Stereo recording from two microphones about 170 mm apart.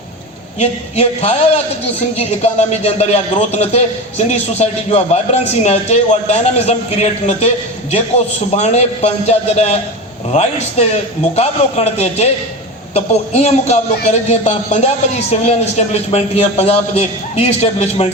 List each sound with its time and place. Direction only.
0.6 s a man's voice: 40° left (ahead or behind)